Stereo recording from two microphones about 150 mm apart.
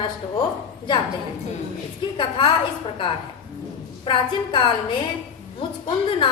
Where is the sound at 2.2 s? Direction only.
35° left (ahead or behind).